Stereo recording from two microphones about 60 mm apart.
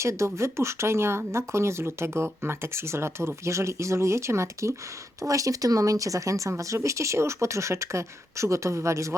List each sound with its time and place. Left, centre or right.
0.0 s speech: right
5.2 s speech: right